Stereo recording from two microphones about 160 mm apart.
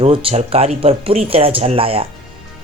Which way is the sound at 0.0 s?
35° right (ahead or behind).